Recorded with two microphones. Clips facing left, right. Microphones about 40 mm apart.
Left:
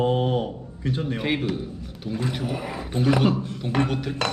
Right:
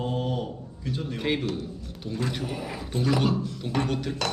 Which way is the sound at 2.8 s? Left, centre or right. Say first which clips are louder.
Left 4 dB; left.